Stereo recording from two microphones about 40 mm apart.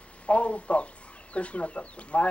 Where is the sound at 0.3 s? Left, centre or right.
Left.